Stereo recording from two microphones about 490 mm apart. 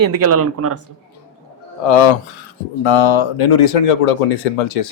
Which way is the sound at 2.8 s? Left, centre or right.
Left.